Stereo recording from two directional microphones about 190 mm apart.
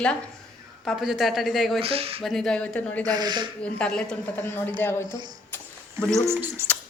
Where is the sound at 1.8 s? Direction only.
30° right (ahead or behind).